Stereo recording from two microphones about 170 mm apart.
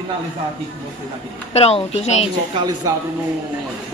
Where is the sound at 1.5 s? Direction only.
35° left (ahead or behind).